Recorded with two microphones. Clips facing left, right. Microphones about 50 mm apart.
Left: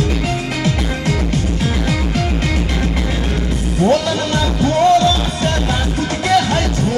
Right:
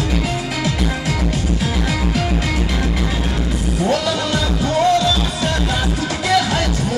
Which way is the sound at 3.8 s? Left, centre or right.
Left.